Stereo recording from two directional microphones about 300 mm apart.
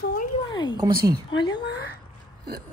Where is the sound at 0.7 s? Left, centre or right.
Centre.